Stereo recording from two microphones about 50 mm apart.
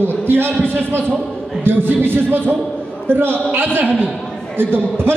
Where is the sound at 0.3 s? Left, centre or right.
Right.